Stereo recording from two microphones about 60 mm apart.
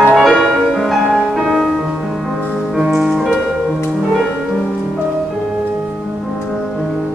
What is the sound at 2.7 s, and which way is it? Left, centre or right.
Music, centre.